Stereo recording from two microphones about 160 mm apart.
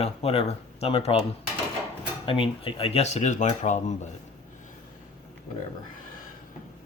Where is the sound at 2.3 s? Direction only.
35° left (ahead or behind).